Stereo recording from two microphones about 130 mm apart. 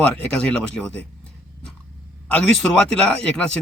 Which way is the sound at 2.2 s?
10° left (ahead or behind).